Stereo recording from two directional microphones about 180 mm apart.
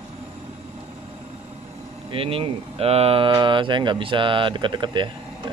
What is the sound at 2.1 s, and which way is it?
Speech, 30° right (ahead or behind).